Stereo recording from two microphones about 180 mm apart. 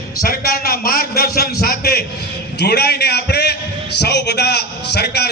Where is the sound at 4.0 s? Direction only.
65° left (ahead or behind).